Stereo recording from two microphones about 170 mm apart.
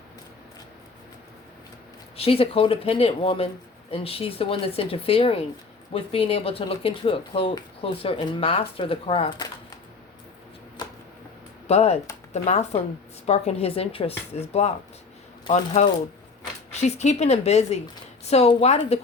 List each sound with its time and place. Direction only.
2.1 s speech: 35° left (ahead or behind)
10.8 s a sound: 25° left (ahead or behind)
11.7 s speech: 40° left (ahead or behind)